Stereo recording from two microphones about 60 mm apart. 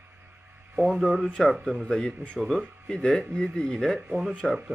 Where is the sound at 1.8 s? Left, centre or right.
Centre.